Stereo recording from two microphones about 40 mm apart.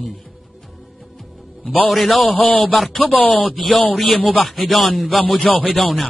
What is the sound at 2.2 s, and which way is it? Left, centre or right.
Speech, left.